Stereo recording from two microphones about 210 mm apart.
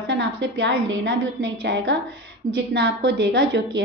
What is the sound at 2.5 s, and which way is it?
Speech, 55° right (ahead or behind).